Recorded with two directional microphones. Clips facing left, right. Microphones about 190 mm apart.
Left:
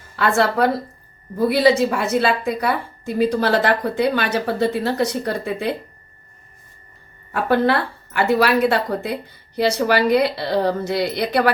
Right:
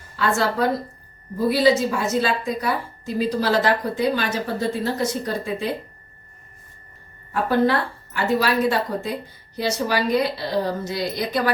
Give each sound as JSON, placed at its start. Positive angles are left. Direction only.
{"t": 0.2, "sound": "a woman's voice", "side_deg": 65}
{"t": 7.7, "sound": "a woman's voice", "side_deg": 65}